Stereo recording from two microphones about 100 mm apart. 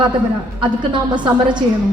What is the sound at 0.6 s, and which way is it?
A woman's voice, 50° right (ahead or behind).